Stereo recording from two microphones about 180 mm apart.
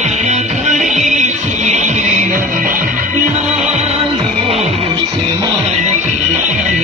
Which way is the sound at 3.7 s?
35° right (ahead or behind).